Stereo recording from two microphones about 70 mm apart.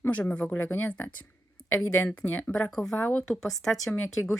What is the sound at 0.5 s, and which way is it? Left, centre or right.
Speech, left.